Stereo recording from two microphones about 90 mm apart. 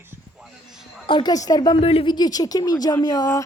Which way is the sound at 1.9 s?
55° left (ahead or behind).